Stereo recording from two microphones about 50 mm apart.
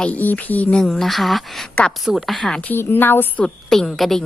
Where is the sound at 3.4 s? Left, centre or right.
Centre.